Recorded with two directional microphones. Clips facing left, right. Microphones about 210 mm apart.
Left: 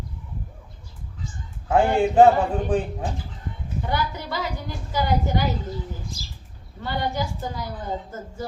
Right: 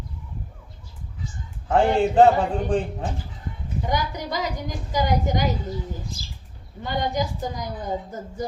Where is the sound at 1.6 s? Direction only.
10° left (ahead or behind).